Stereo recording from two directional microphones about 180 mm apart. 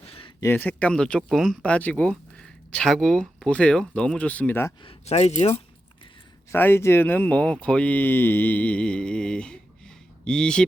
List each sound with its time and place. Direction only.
0.0 s a sound: 30° left (ahead or behind)
0.3 s speech: 10° left (ahead or behind)
4.8 s speech: 30° left (ahead or behind)
6.5 s speech: 10° left (ahead or behind)